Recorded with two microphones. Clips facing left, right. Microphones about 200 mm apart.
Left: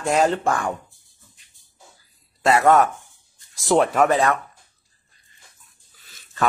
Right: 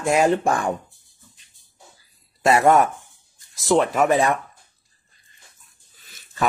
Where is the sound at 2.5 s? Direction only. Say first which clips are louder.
Even; 20° right (ahead or behind).